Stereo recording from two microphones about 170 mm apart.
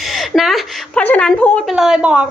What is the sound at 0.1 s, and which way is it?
A woman's voice, centre (ahead or behind).